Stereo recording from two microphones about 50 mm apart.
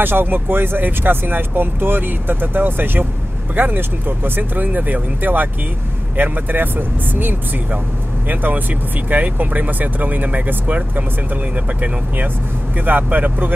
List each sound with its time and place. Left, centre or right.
0.0 s speech: right
12.8 s speech: right